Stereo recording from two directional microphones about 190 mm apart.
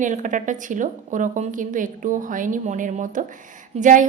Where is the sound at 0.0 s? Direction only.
40° right (ahead or behind).